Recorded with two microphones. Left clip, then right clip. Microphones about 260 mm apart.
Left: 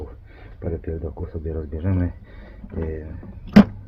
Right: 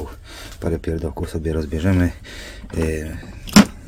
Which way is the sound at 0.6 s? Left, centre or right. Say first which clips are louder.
Right 5 dB; right.